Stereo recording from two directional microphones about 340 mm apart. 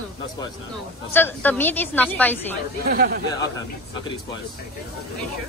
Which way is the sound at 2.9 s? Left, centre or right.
Right.